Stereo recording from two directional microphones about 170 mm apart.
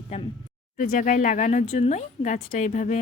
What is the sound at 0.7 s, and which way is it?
Speech, 50° left (ahead or behind).